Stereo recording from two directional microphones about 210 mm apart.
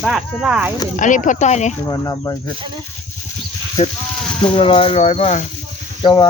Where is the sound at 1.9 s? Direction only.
15° left (ahead or behind).